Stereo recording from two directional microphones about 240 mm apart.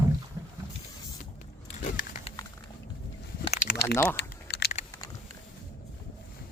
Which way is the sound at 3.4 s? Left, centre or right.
Left.